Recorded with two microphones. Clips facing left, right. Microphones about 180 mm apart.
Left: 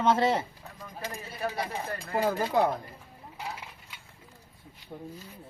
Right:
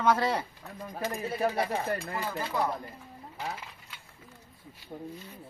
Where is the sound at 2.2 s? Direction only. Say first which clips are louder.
Left 7 dB; 40° left (ahead or behind).